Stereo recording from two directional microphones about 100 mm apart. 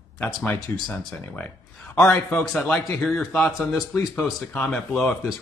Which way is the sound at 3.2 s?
15° left (ahead or behind).